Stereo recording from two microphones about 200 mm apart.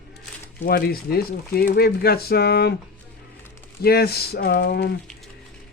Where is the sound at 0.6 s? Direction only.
50° left (ahead or behind).